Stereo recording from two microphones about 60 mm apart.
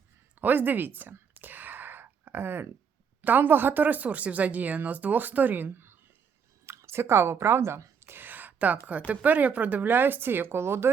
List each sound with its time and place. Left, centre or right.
0.4 s speech: right
1.3 s whispering: right
3.2 s speech: right
6.7 s speech: right
8.0 s a sound: right
9.0 s speech: right